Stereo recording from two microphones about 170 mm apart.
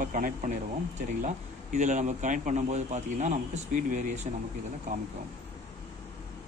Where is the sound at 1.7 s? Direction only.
45° right (ahead or behind).